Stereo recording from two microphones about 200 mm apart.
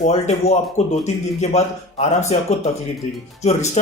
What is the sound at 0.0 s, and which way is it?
Speech, 30° left (ahead or behind).